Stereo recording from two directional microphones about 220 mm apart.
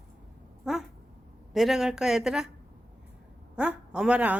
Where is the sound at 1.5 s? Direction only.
Centre (ahead or behind).